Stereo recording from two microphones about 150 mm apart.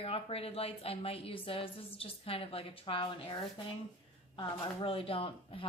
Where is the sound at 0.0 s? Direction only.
40° left (ahead or behind).